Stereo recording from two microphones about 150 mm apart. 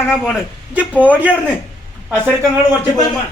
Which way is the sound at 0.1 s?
5° right (ahead or behind).